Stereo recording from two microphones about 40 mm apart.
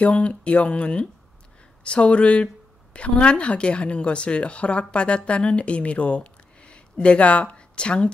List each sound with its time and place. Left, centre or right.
0.0 s speech: left